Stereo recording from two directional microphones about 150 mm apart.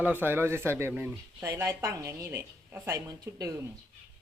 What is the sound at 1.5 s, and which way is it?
A woman's voice, 25° right (ahead or behind).